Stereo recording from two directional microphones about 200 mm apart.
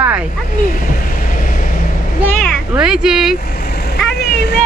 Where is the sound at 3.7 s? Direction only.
50° left (ahead or behind).